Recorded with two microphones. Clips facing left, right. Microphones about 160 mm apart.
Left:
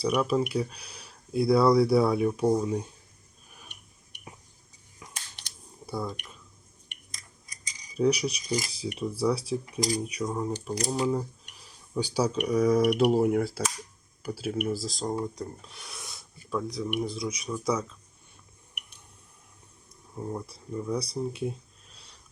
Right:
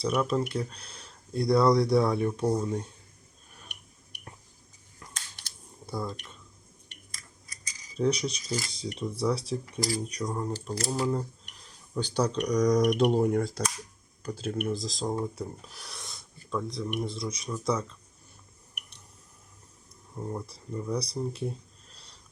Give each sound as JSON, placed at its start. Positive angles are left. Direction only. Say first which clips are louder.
{"t": 0.0, "sound": "speech", "louder": "left 2 dB", "side_deg": 5}
{"t": 4.9, "sound": "a sound", "louder": "left 1 dB", "side_deg": 15}
{"t": 5.8, "sound": "dishes", "louder": "left 1 dB", "side_deg": 0}
{"t": 6.1, "sound": "speech", "louder": "left 1 dB", "side_deg": 15}
{"t": 6.8, "sound": "cutlery", "louder": "even", "side_deg": 15}
{"t": 7.9, "sound": "speech", "louder": "left 2 dB", "side_deg": 10}
{"t": 10.5, "sound": "speech", "louder": "left 2 dB", "side_deg": 15}
{"t": 20.1, "sound": "speech", "louder": "left 1 dB", "side_deg": 0}